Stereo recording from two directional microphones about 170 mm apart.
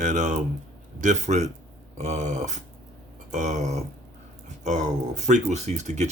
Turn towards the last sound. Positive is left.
turn(degrees=-45)  # may be behind; listen again after turning